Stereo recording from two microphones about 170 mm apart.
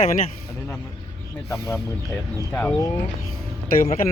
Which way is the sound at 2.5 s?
10° left (ahead or behind).